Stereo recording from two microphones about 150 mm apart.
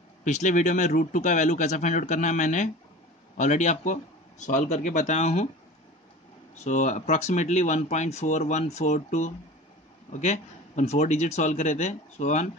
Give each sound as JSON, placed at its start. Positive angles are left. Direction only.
{"t": 0.2, "sound": "speech", "side_deg": 55}
{"t": 6.6, "sound": "speech", "side_deg": 55}